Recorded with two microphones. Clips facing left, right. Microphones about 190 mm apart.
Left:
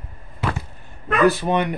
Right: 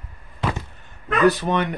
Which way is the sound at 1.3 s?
15° left (ahead or behind).